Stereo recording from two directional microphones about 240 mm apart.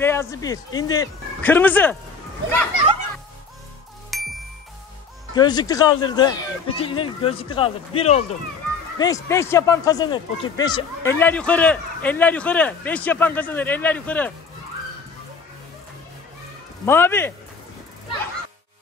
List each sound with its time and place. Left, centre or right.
0.0 s speech: centre
4.1 s ding: centre
5.3 s speech: centre
8.9 s speech: centre
16.8 s speech: centre